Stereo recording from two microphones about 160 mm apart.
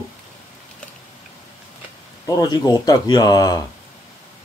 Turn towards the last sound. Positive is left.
turn(degrees=25)  # may be behind; listen again after turning